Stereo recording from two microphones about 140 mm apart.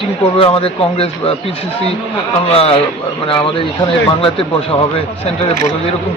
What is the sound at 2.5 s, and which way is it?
Speech, 45° left (ahead or behind).